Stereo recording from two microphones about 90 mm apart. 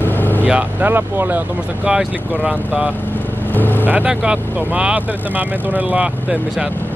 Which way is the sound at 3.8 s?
15° right (ahead or behind).